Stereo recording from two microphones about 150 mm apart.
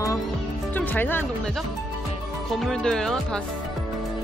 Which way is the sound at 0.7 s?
10° left (ahead or behind).